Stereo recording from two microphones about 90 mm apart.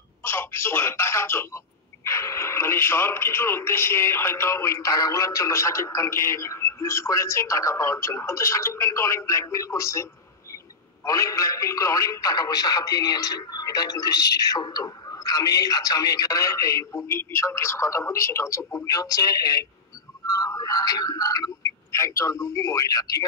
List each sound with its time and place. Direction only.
0.2 s telephone: 30° left (ahead or behind)
2.0 s a man's voice: 30° left (ahead or behind)
11.1 s a man's voice: 40° left (ahead or behind)
20.2 s music: 45° left (ahead or behind)
21.9 s a man's voice: 35° left (ahead or behind)